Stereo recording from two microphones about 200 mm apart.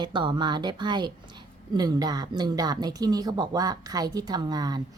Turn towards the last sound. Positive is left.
turn(degrees=-20)  # may be behind; listen again after turning